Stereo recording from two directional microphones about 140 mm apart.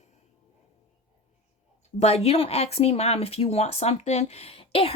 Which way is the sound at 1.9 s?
50° left (ahead or behind).